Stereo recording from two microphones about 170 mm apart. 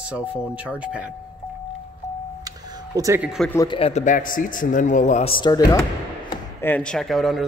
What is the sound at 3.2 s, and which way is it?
Speech, 5° right (ahead or behind).